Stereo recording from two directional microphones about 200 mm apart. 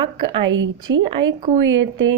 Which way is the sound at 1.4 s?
30° right (ahead or behind).